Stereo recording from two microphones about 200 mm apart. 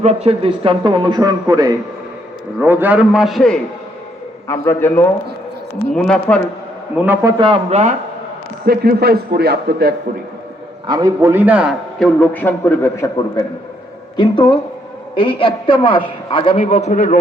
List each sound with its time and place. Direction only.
0.0 s a man's voice: 35° right (ahead or behind); by 3.6 s centre (ahead or behind)
4.4 s a man's voice: 10° left (ahead or behind)
6.9 s a man's voice: 10° right (ahead or behind); by 7.9 s 35° right (ahead or behind)
8.6 s a man's voice: 50° right (ahead or behind)
10.8 s a man's voice: 20° right (ahead or behind)
11.9 s a man's voice: 5° left (ahead or behind); by 17.2 s 40° left (ahead or behind)